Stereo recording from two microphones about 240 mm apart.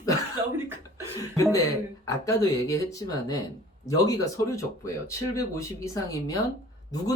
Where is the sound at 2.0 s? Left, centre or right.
Centre.